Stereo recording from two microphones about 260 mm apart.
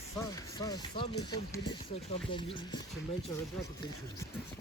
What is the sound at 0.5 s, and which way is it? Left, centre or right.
Speech, centre.